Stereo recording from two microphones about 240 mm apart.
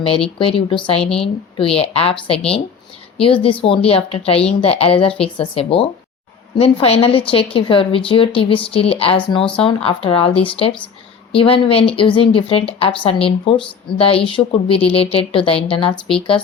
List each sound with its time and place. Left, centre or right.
0.3 s a woman's voice: left